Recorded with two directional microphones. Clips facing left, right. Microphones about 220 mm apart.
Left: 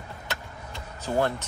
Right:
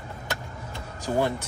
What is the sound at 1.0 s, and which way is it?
Speech, 15° right (ahead or behind).